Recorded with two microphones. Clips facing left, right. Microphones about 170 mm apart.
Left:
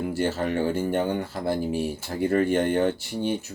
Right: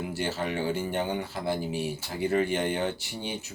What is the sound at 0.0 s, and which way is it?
Speech, 50° left (ahead or behind).